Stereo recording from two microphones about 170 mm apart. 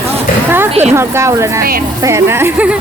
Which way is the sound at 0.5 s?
15° right (ahead or behind).